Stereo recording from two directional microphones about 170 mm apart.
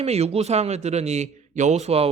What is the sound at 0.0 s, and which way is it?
Speech, 40° right (ahead or behind).